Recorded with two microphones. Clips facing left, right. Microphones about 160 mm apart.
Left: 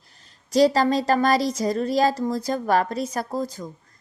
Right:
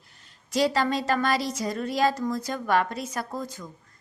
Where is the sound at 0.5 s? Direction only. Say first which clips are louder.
Left 6 dB; 35° left (ahead or behind).